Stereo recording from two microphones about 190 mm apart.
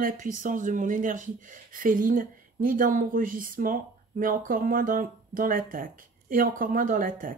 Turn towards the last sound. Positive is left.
turn(degrees=-45)  # may be behind; listen again after turning